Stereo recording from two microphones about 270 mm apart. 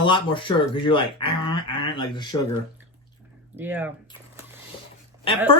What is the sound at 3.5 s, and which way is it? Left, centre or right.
Speech, centre.